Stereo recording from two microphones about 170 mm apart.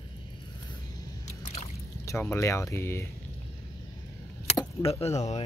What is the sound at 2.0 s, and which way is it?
Speech, 15° left (ahead or behind).